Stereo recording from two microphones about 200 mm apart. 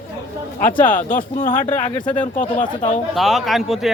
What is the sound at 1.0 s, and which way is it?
Speech, 45° left (ahead or behind).